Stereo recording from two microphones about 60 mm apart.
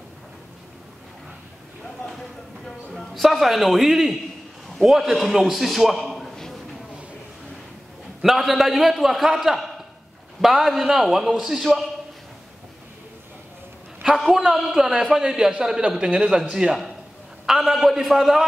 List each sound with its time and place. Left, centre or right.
2.0 s a sound: centre
2.9 s a man's voice: centre
8.2 s a man's voice: centre
14.0 s a man's voice: centre
17.5 s a man's voice: centre